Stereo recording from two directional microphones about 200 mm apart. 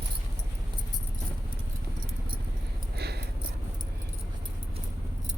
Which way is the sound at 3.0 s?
55° right (ahead or behind).